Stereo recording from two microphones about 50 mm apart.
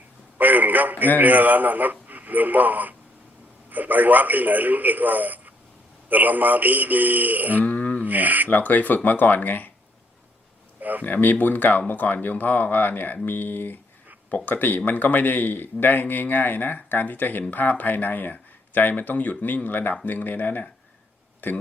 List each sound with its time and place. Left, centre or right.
0.3 s speech: right
7.6 s a sound: left
8.0 s speech: right
8.4 s a man's voice: left
10.8 s a sound: right
11.0 s a man's voice: left